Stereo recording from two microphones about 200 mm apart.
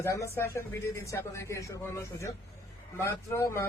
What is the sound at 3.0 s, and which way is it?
Speech, 15° left (ahead or behind).